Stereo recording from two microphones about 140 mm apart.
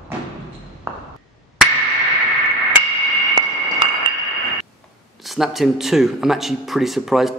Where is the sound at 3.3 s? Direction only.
30° right (ahead or behind).